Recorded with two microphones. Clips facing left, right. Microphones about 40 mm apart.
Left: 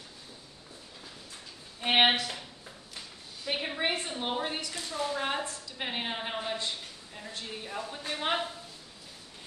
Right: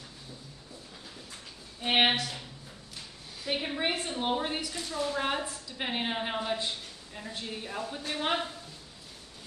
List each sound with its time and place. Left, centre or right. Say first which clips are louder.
1.8 s speech: left 1 dB; centre
3.4 s a woman's voice: even; centre